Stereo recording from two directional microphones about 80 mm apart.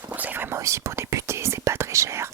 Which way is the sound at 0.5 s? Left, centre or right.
Right.